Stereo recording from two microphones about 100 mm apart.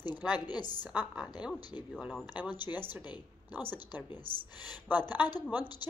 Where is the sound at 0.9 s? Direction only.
10° right (ahead or behind).